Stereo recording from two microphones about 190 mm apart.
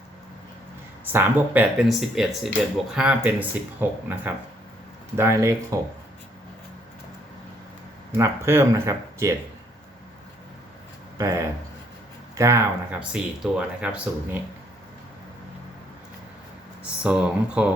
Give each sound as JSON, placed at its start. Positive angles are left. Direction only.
{"t": 1.1, "sound": "speech", "side_deg": -5}
{"t": 8.1, "sound": "speech", "side_deg": -15}
{"t": 11.2, "sound": "speech", "side_deg": -15}
{"t": 16.8, "sound": "speech", "side_deg": -5}